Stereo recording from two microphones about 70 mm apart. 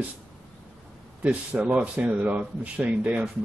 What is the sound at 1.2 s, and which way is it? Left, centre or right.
Speech, centre.